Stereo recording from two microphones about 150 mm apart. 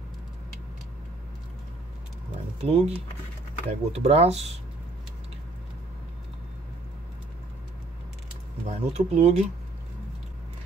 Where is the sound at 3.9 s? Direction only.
45° right (ahead or behind).